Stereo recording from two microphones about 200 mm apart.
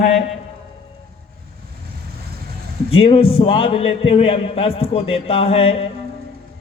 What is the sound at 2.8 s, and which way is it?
A man's voice, 30° left (ahead or behind).